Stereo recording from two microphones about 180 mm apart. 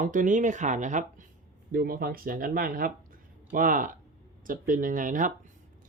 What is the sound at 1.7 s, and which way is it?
Speech, 55° right (ahead or behind).